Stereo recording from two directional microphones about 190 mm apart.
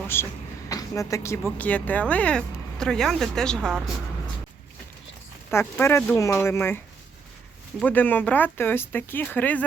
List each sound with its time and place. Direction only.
0.1 s speech: 10° left (ahead or behind)
5.5 s speech: 15° left (ahead or behind)